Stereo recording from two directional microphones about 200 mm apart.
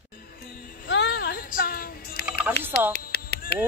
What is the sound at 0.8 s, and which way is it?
Child singing, 60° left (ahead or behind).